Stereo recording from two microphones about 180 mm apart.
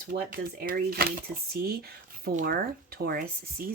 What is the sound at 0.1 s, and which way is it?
Speech, 50° right (ahead or behind).